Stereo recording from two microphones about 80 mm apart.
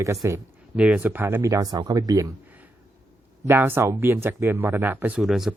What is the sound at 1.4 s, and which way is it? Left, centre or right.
Speech, right.